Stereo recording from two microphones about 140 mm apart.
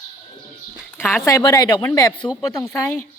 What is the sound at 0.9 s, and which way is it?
Speech, 15° left (ahead or behind).